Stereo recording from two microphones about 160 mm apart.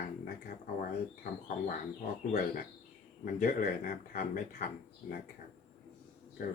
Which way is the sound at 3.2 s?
65° left (ahead or behind).